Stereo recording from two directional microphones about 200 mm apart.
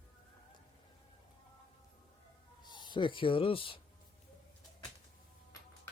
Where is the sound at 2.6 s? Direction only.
20° left (ahead or behind).